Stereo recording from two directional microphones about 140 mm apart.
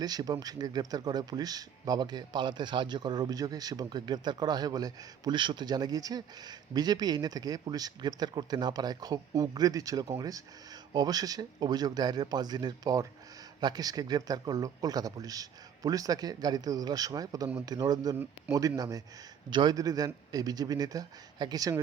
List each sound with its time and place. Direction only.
0.0 s speech: 30° right (ahead or behind)